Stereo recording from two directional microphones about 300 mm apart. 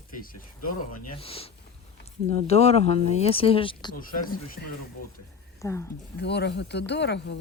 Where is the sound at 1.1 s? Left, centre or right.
Centre.